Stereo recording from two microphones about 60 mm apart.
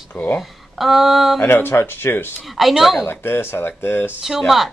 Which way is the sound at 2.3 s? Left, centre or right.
Centre.